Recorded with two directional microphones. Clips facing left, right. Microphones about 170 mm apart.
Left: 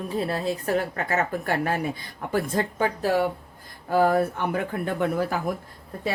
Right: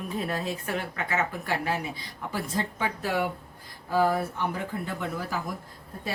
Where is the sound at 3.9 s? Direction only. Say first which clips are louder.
Left 4 dB; 50° left (ahead or behind).